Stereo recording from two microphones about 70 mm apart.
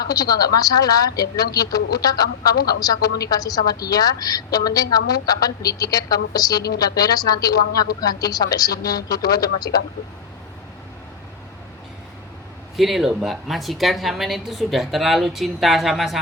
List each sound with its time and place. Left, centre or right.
0.0 s a woman's voice: left
12.7 s a woman's voice: centre